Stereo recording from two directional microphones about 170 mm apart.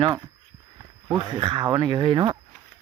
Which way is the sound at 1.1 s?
30° right (ahead or behind).